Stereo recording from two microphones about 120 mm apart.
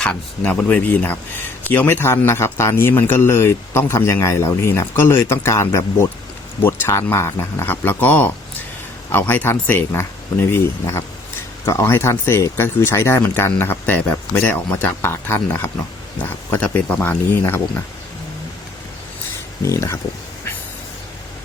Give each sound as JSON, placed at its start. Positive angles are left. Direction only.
{"t": 0.0, "sound": "a man's voice", "side_deg": 10}
{"t": 19.6, "sound": "a man's voice", "side_deg": 25}